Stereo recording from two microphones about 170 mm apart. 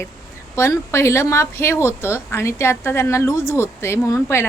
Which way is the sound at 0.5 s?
15° left (ahead or behind).